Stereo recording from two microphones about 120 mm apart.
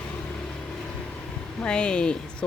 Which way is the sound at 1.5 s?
5° left (ahead or behind).